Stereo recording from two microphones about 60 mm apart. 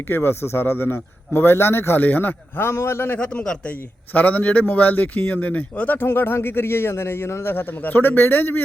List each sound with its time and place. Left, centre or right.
0.1 s a man's voice: left
3.2 s a man's voice: centre
3.7 s speech: left
6.1 s a man's voice: left